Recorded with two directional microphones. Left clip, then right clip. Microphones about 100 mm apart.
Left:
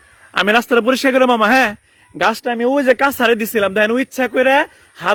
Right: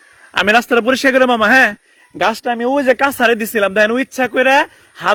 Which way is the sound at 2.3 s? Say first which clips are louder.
Even; 50° left (ahead or behind).